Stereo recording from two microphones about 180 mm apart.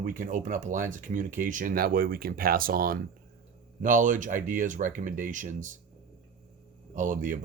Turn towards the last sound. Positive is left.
turn(degrees=-45)  # may be behind; listen again after turning